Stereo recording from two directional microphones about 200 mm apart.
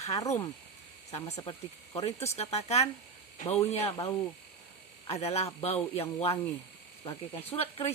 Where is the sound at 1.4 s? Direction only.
20° left (ahead or behind).